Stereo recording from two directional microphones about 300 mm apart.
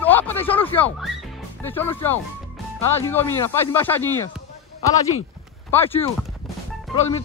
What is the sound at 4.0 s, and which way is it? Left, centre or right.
Speech, left.